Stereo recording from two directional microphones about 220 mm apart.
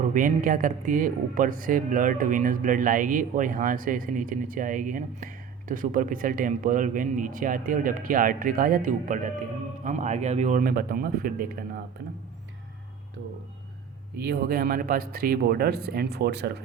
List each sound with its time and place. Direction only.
0.0 s speech: 35° right (ahead or behind)
14.2 s speech: 45° right (ahead or behind)